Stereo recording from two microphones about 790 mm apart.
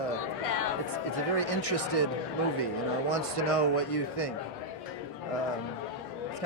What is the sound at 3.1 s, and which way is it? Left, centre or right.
Speech, left.